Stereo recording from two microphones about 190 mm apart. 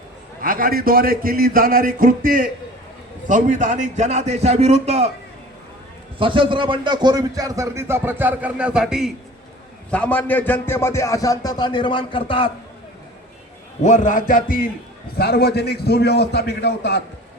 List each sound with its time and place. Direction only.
0.4 s a man's voice: 45° right (ahead or behind)
6.1 s a man's voice: 25° right (ahead or behind); by 12.5 s 25° left (ahead or behind)
13.8 s a man's voice: 40° left (ahead or behind); by 17.0 s 60° left (ahead or behind)